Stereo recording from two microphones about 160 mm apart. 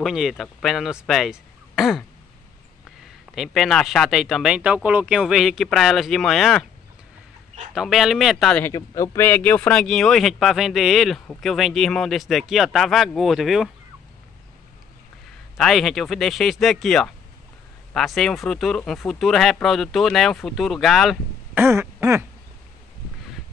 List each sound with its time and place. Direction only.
0.0 s speech: centre (ahead or behind)
3.3 s speech: centre (ahead or behind)
7.7 s speech: centre (ahead or behind)
8.6 s speech: 20° left (ahead or behind); by 13.7 s centre (ahead or behind)
15.5 s speech: centre (ahead or behind)
21.5 s throat clearing: 15° right (ahead or behind)